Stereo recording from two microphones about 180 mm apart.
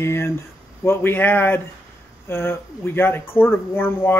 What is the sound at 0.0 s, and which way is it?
A man's voice, 15° left (ahead or behind).